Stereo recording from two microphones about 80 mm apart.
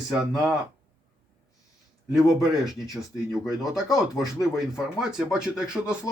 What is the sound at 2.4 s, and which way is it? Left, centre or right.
Speech, left.